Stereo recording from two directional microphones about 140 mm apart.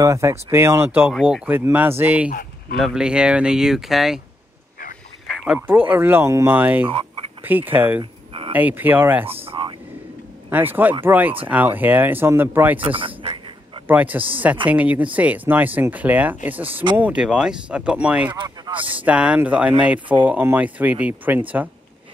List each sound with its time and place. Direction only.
0.0 s speech: 20° right (ahead or behind); by 4.2 s centre (ahead or behind)
5.3 s a sound: 5° right (ahead or behind)
5.7 s speech: 15° right (ahead or behind)
8.0 s a sound: 40° right (ahead or behind)
8.5 s speech: 10° right (ahead or behind)
9.5 s a sound: 40° right (ahead or behind)
10.5 s speech: 15° right (ahead or behind)
12.8 s speech: 40° right (ahead or behind)
13.8 s speech: 10° right (ahead or behind)
18.3 s speech: 35° right (ahead or behind)
19.0 s speech: 10° right (ahead or behind)